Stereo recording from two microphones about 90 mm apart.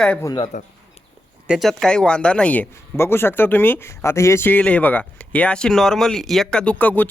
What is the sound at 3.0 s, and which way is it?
Speech, 25° left (ahead or behind).